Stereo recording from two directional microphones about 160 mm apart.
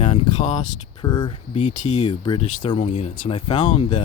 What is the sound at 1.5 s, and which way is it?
Speech, 50° left (ahead or behind).